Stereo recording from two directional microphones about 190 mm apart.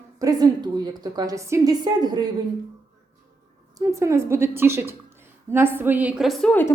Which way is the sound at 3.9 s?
15° right (ahead or behind).